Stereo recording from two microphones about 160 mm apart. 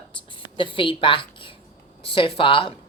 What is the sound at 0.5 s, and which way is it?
Speech, 30° left (ahead or behind).